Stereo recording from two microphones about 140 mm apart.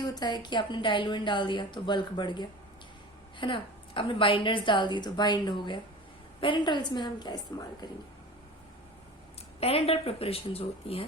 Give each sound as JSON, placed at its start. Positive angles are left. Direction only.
{"t": 0.0, "sound": "a woman's voice", "side_deg": 25}
{"t": 9.6, "sound": "speech", "side_deg": 45}